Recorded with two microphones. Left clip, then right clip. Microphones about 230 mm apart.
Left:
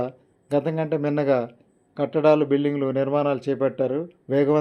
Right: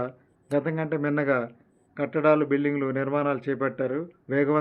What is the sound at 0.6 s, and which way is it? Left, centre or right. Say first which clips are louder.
A man's voice: left 3 dB; centre.